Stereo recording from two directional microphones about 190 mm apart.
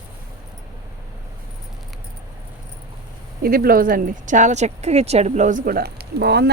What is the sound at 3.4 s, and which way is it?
Speech, 50° right (ahead or behind).